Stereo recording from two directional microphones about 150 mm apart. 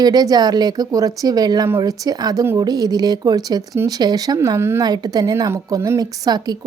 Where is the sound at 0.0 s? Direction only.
25° right (ahead or behind).